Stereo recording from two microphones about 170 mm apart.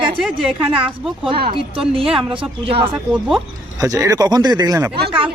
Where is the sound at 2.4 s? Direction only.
30° right (ahead or behind).